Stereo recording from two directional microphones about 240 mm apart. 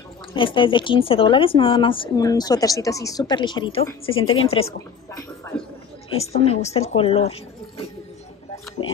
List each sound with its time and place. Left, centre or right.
0.3 s speech: left
6.1 s speech: left